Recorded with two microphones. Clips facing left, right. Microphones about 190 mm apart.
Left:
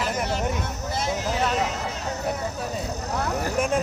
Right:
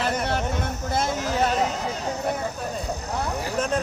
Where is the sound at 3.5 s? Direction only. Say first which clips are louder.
Left 1 dB; 10° left (ahead or behind).